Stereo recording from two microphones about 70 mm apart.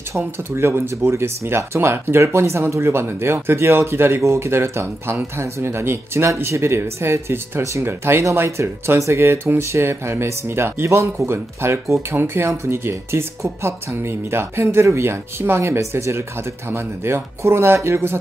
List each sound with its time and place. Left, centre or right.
0.5 s speech: right